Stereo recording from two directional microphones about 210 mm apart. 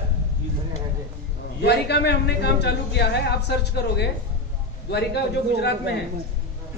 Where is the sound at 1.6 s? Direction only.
50° left (ahead or behind).